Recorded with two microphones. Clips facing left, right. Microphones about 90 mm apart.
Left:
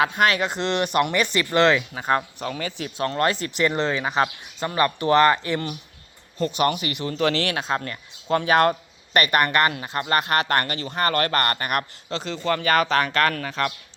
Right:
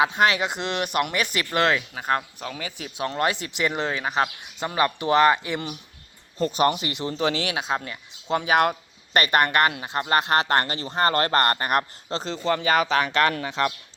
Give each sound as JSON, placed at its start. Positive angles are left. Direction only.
{"t": 0.0, "sound": "speech", "side_deg": -25}
{"t": 0.4, "sound": "speech", "side_deg": -10}
{"t": 4.6, "sound": "speech", "side_deg": -15}
{"t": 6.4, "sound": "speech", "side_deg": -30}
{"t": 9.1, "sound": "speech", "side_deg": -25}
{"t": 12.5, "sound": "speech", "side_deg": -20}